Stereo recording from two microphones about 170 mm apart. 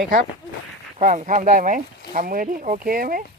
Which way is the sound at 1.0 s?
45° right (ahead or behind).